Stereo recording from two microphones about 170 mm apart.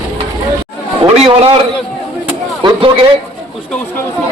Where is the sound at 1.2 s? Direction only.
35° right (ahead or behind).